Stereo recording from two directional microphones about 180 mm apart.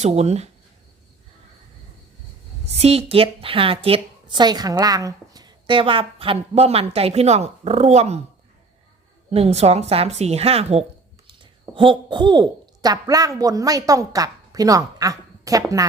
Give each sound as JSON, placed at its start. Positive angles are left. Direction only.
{"t": 0.0, "sound": "a woman's voice", "side_deg": -35}
{"t": 2.7, "sound": "a woman's voice", "side_deg": -35}
{"t": 9.3, "sound": "a woman's voice", "side_deg": -35}